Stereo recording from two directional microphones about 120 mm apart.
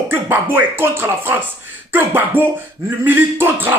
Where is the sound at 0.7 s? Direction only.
20° right (ahead or behind).